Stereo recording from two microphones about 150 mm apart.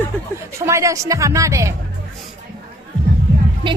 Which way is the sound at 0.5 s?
20° right (ahead or behind).